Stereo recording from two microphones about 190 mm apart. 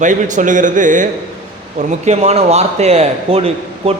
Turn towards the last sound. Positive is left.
turn(degrees=-30)  # may be behind; listen again after turning